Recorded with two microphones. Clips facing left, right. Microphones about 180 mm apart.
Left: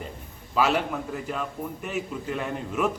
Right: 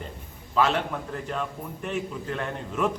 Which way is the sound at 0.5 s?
5° left (ahead or behind).